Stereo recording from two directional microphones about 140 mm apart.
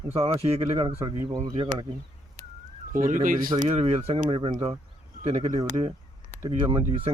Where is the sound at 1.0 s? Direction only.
30° right (ahead or behind).